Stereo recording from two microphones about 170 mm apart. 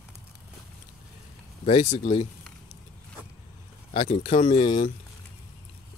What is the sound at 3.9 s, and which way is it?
Speech, 40° left (ahead or behind).